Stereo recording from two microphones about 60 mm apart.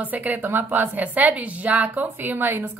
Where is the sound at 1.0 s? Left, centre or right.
Right.